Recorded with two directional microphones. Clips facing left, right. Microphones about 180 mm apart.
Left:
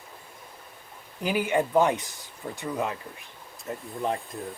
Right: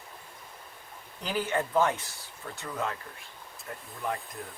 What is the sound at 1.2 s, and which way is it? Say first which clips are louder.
Speech: left 5 dB; 10° left (ahead or behind).